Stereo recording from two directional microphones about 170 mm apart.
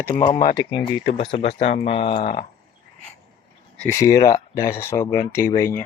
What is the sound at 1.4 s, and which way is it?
Speech, 35° left (ahead or behind).